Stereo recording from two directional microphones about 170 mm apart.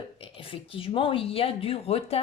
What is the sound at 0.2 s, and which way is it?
Speech, 30° left (ahead or behind).